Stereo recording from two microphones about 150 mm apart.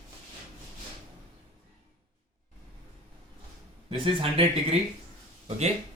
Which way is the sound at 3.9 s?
35° right (ahead or behind).